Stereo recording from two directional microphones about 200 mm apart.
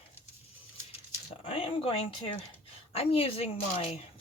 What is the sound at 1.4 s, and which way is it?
Speech, 30° left (ahead or behind).